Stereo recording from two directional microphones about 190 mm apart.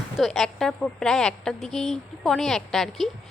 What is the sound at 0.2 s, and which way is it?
A woman's voice, centre (ahead or behind).